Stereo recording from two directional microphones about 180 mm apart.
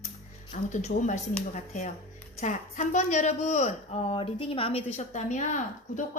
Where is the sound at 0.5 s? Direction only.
40° left (ahead or behind).